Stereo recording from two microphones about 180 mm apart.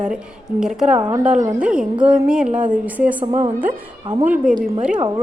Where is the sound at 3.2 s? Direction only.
25° right (ahead or behind).